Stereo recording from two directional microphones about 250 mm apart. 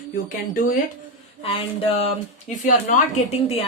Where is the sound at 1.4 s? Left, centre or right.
Left.